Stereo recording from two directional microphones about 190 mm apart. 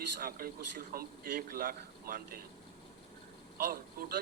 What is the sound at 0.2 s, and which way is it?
Speech, 50° right (ahead or behind).